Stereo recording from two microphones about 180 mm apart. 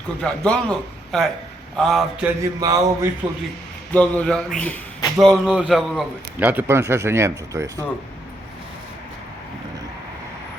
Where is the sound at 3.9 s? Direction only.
5° left (ahead or behind); by 7.7 s 15° right (ahead or behind).